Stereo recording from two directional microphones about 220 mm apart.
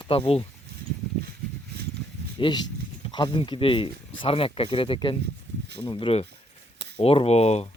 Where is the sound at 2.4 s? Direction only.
20° left (ahead or behind).